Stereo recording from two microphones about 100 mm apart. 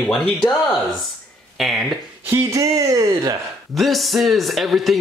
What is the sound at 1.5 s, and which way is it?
Speech, centre (ahead or behind).